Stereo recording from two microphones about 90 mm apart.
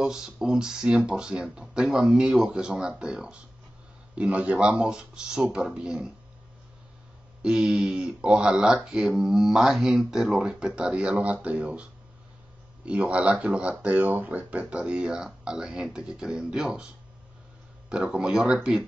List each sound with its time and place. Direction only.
0.0 s speech: 5° right (ahead or behind)
7.4 s speech: 5° right (ahead or behind)